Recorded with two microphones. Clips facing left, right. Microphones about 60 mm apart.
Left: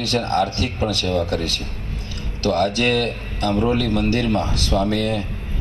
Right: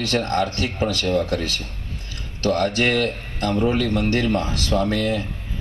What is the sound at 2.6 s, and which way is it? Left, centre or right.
Speech, right.